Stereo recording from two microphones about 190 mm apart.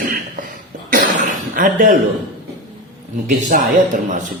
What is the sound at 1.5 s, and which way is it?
Speech, 45° right (ahead or behind).